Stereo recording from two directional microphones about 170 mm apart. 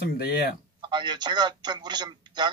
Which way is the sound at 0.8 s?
25° right (ahead or behind).